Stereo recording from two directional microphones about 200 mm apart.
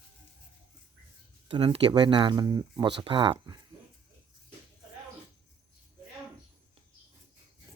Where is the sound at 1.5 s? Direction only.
25° right (ahead or behind).